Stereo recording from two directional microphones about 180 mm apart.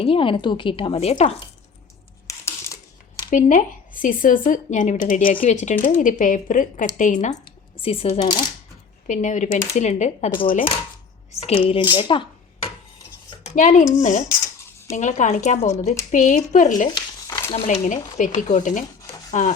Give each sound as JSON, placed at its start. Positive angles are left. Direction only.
{"t": 0.0, "sound": "a woman's voice", "side_deg": 30}
{"t": 2.2, "sound": "a sound", "side_deg": 15}
{"t": 3.2, "sound": "speech", "side_deg": 45}
{"t": 7.8, "sound": "a woman's voice", "side_deg": 30}
{"t": 13.4, "sound": "speech", "side_deg": 40}
{"t": 16.9, "sound": "a sound", "side_deg": 20}
{"t": 17.7, "sound": "speech", "side_deg": 45}